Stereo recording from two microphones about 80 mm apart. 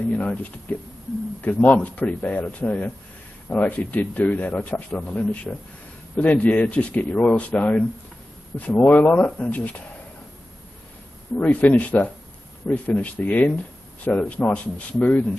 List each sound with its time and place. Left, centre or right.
0.1 s speech: centre
11.3 s speech: centre